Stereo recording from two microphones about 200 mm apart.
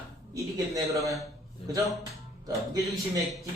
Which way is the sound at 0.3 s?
15° right (ahead or behind).